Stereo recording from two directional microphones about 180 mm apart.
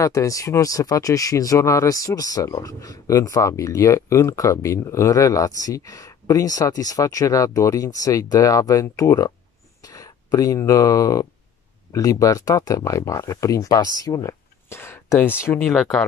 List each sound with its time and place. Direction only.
0.0 s speech: 20° left (ahead or behind); by 16.1 s centre (ahead or behind)